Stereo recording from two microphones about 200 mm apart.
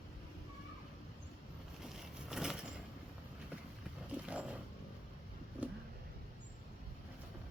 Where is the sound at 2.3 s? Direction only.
5° right (ahead or behind).